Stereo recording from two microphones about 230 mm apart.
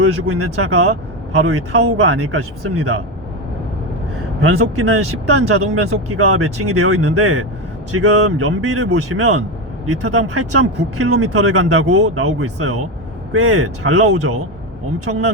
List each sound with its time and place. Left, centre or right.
0.0 s speech: right
4.4 s speech: right
15.1 s speech: right